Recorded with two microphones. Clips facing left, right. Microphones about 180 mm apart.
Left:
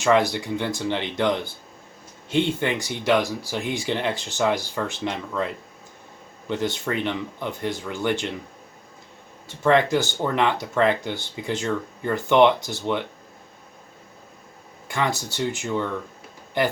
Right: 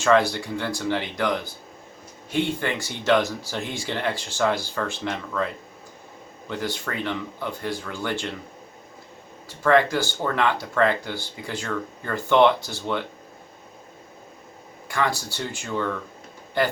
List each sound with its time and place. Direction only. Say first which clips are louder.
0.0 s speech: even; 15° left (ahead or behind)
2.3 s speech: left 2 dB; 20° left (ahead or behind)
6.5 s speech: left 4 dB; 20° left (ahead or behind)
9.5 s speech: left 1 dB; 20° left (ahead or behind)
14.8 s speech: even; 20° left (ahead or behind)